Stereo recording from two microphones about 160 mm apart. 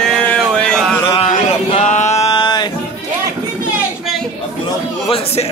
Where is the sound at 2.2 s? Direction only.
25° left (ahead or behind).